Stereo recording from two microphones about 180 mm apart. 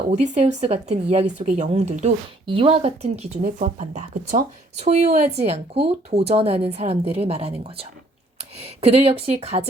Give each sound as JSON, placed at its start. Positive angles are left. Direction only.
{"t": 0.1, "sound": "speech", "side_deg": -40}